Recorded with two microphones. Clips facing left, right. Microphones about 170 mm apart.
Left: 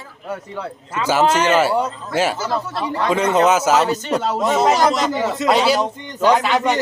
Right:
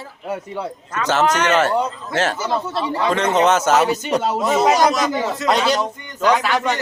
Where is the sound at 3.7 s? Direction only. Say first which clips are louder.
Even; 10° right (ahead or behind).